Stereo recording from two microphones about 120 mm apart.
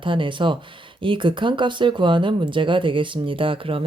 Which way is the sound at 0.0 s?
45° right (ahead or behind).